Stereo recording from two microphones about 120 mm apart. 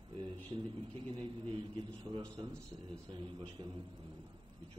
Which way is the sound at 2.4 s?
45° right (ahead or behind).